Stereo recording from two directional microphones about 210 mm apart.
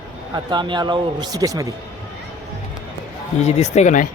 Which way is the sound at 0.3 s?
20° right (ahead or behind).